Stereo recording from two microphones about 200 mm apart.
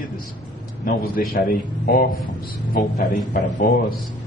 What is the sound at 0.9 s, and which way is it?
A man's voice, 45° left (ahead or behind).